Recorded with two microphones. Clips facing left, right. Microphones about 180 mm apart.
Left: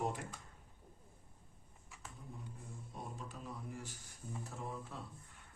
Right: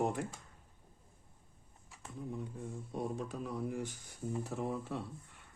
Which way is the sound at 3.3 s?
70° right (ahead or behind).